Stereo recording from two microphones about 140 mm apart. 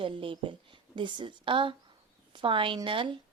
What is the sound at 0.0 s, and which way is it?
A woman's voice, 40° right (ahead or behind).